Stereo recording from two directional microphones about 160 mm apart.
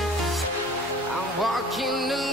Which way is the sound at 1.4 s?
Centre (ahead or behind).